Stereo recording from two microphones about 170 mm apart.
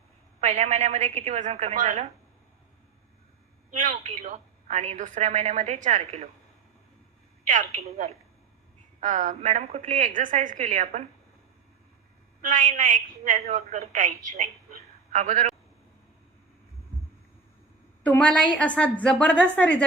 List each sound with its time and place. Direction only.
0.4 s a woman's voice: 40° right (ahead or behind)
3.7 s a woman's voice: 45° right (ahead or behind)
7.4 s a woman's voice: 45° right (ahead or behind)
12.4 s a woman's voice: 50° right (ahead or behind)
18.0 s a woman's voice: 10° left (ahead or behind)